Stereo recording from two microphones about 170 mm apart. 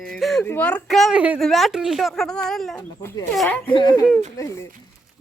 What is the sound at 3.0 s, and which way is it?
Speech, 15° left (ahead or behind).